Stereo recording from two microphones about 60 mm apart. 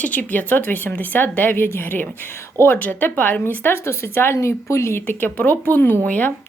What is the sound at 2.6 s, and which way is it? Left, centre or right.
Speech, left.